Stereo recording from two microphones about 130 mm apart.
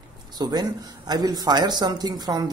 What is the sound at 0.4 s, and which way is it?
Speech, 30° right (ahead or behind).